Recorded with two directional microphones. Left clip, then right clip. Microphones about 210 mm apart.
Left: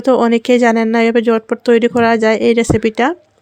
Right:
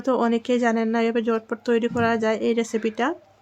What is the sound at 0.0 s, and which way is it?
Speech, 40° left (ahead or behind).